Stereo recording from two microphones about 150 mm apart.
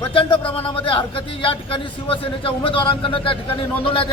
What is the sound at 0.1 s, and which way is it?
A man's voice, 35° left (ahead or behind).